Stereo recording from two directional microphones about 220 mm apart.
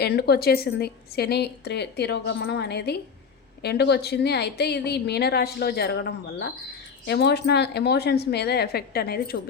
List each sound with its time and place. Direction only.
0.0 s a woman's voice: 45° left (ahead or behind)